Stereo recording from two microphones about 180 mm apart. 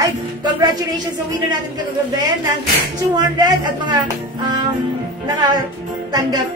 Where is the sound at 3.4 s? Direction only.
20° right (ahead or behind).